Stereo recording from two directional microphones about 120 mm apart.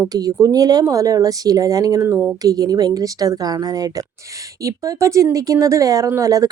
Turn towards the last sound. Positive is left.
turn(degrees=-30)  # may be behind; listen again after turning